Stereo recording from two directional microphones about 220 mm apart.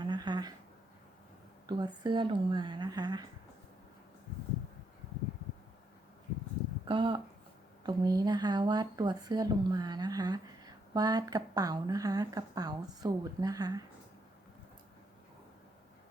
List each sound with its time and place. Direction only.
0.0 s a sound: 20° right (ahead or behind)
1.6 s speech: 20° right (ahead or behind)
6.8 s speech: 20° right (ahead or behind)